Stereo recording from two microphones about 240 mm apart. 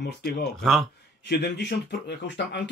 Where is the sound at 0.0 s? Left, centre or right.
Left.